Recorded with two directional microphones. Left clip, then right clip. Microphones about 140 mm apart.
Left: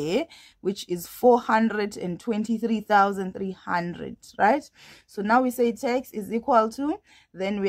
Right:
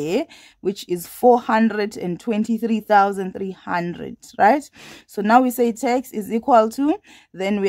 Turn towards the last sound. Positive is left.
turn(degrees=-30)  # may be behind; listen again after turning